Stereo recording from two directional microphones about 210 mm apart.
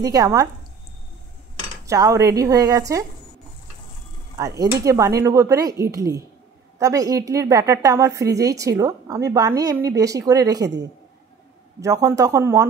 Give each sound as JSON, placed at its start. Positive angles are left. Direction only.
{"t": 0.0, "sound": "a woman's voice", "side_deg": -15}
{"t": 1.9, "sound": "a woman's voice", "side_deg": -15}
{"t": 4.4, "sound": "a woman's voice", "side_deg": -15}
{"t": 11.8, "sound": "a woman's voice", "side_deg": -15}